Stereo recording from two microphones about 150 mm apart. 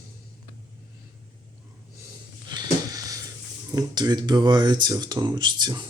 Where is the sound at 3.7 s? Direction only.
25° right (ahead or behind).